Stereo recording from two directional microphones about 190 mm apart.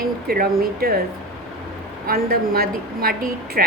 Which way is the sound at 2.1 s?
50° right (ahead or behind).